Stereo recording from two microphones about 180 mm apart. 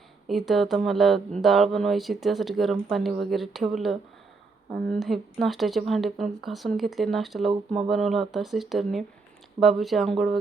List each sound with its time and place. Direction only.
0.3 s speech: centre (ahead or behind)
7.5 s speech: 30° right (ahead or behind)
7.9 s speech: centre (ahead or behind)